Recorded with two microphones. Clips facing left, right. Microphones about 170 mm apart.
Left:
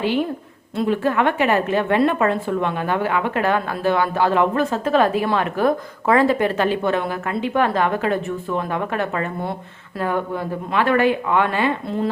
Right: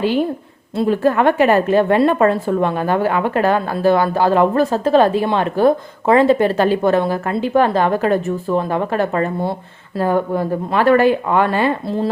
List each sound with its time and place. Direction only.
0.8 s a woman's voice: 40° right (ahead or behind)